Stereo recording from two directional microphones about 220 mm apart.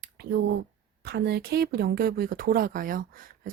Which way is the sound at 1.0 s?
45° right (ahead or behind).